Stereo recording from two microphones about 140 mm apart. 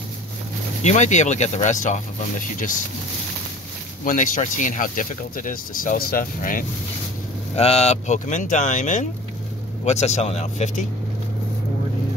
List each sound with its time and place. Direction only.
0.8 s speech: 55° left (ahead or behind)
4.0 s speech: 70° left (ahead or behind); by 6.6 s 85° left
7.5 s speech: 45° left (ahead or behind)